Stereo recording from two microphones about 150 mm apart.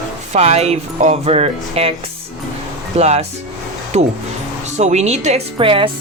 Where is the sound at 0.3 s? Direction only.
45° right (ahead or behind).